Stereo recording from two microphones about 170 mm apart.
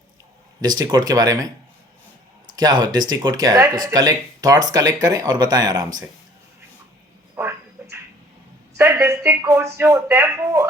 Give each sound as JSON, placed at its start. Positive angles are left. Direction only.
{"t": 0.6, "sound": "speech", "side_deg": -25}
{"t": 2.6, "sound": "speech", "side_deg": -25}
{"t": 7.3, "sound": "a sound", "side_deg": -15}
{"t": 8.8, "sound": "speech", "side_deg": -15}